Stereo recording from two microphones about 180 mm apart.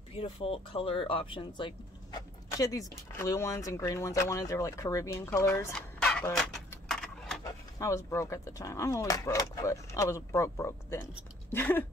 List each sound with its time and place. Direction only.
0.1 s speech: 30° left (ahead or behind); by 5.7 s 15° left (ahead or behind)
5.7 s a sound: 5° left (ahead or behind)
7.8 s speech: 15° left (ahead or behind)